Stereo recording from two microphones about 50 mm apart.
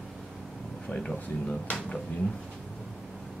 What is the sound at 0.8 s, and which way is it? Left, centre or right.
Speech, centre.